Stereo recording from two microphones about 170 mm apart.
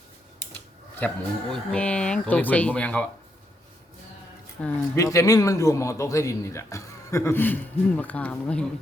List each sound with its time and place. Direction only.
0.9 s a man's voice: 5° left (ahead or behind)
4.6 s a man's voice: 10° left (ahead or behind)
4.9 s a man's voice: 20° left (ahead or behind)